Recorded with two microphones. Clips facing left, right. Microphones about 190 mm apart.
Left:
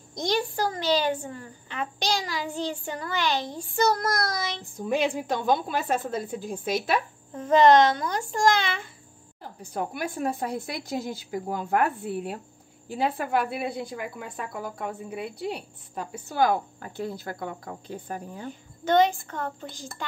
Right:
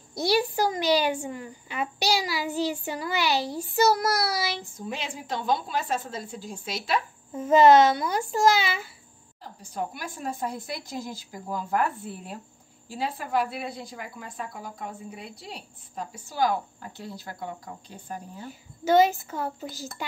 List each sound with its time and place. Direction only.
0.1 s a woman's voice: 10° right (ahead or behind)
4.8 s speech: 55° left (ahead or behind)
7.3 s a woman's voice: 5° right (ahead or behind)
9.6 s speech: 60° left (ahead or behind)
18.5 s a woman's voice: 5° right (ahead or behind)